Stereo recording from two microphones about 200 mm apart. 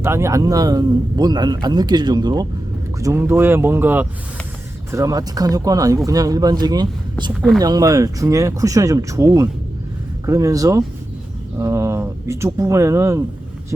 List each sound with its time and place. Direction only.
0.0 s a man's voice: 15° right (ahead or behind)